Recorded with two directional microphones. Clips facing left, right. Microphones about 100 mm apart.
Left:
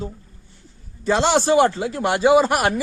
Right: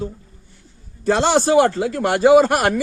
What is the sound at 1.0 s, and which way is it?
A man's voice, 45° right (ahead or behind).